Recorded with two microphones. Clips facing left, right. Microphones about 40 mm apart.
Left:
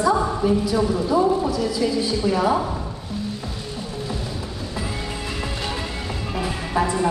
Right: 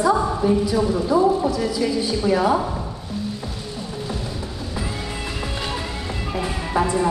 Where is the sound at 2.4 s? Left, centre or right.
Centre.